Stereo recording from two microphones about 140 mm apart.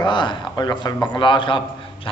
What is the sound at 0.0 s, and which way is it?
Speech, 35° left (ahead or behind).